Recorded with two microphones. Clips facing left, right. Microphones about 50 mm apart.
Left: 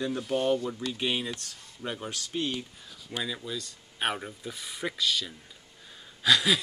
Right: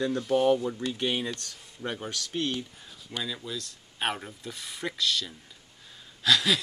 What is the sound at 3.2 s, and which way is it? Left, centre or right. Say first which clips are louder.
Speech: left 1 dB; centre.